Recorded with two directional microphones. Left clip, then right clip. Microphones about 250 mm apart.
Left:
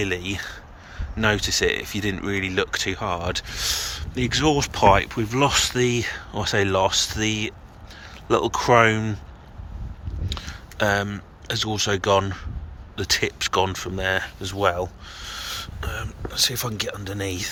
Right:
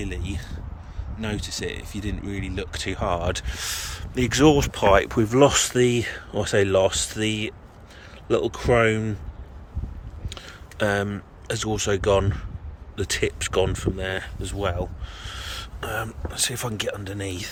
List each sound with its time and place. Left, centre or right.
0.0 s speech: centre
10.2 s speech: centre
15.9 s speech: centre